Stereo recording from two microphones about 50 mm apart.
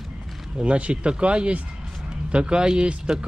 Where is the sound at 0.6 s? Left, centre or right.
Right.